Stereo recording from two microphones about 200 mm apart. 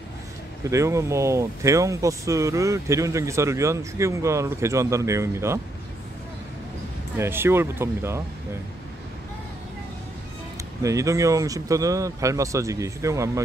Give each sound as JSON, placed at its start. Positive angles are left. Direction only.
{"t": 0.7, "sound": "speech", "side_deg": -15}
{"t": 7.2, "sound": "speech", "side_deg": -10}
{"t": 10.8, "sound": "speech", "side_deg": -15}